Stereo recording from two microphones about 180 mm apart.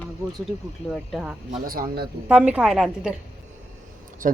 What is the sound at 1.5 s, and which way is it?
Speech, 50° right (ahead or behind).